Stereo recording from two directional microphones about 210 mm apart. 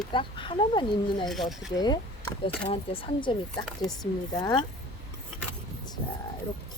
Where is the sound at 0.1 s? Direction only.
25° left (ahead or behind).